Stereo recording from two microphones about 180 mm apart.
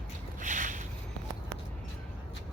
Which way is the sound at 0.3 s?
45° right (ahead or behind).